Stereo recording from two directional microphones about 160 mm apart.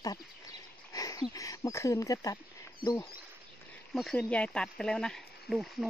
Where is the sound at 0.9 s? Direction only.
20° left (ahead or behind).